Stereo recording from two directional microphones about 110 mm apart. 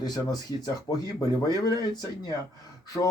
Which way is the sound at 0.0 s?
35° left (ahead or behind).